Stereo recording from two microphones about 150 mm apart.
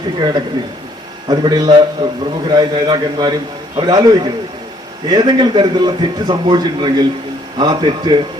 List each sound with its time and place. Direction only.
1.3 s a man's voice: 30° right (ahead or behind)